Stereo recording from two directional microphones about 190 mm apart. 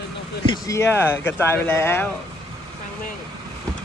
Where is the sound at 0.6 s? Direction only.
15° left (ahead or behind).